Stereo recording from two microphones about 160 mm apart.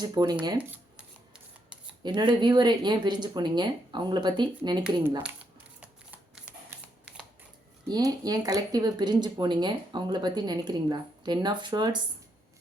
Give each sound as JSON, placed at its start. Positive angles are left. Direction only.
{"t": 0.0, "sound": "speech", "side_deg": -25}
{"t": 2.0, "sound": "speech", "side_deg": -30}
{"t": 5.8, "sound": "shuffling cards", "side_deg": -5}
{"t": 7.9, "sound": "speech", "side_deg": -25}